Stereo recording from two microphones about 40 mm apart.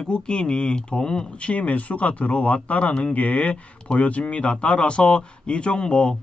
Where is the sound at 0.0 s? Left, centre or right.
Left.